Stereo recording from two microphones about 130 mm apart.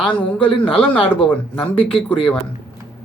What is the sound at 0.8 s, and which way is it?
Speech, 10° left (ahead or behind).